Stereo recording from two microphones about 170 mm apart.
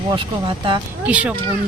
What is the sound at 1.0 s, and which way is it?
Speech, 5° right (ahead or behind).